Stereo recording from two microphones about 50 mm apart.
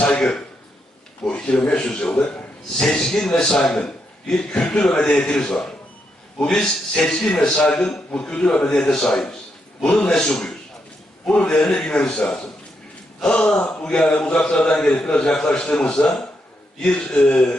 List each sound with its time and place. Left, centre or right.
0.0 s a man's voice: left
2.8 s a man's voice: centre
11.3 s a man's voice: left